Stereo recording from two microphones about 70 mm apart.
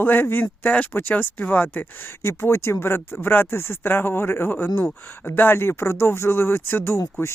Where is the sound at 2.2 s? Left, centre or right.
Left.